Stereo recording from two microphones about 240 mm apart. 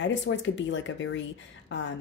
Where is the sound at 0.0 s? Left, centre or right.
Left.